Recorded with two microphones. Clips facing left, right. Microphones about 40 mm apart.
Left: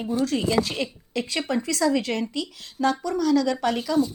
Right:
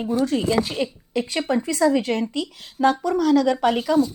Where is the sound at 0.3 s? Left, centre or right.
Right.